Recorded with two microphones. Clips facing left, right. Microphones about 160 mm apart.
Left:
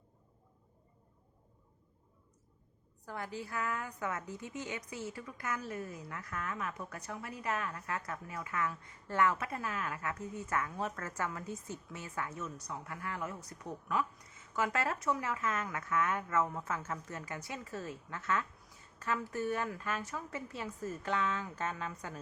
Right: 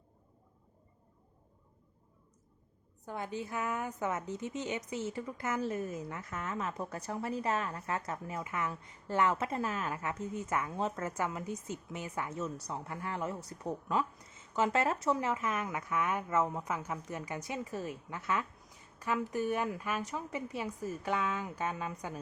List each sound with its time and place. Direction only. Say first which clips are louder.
3.1 s a woman's voice: right 3 dB; 20° right (ahead or behind)